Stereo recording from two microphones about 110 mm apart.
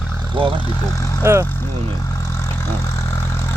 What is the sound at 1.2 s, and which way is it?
Speech, 25° right (ahead or behind).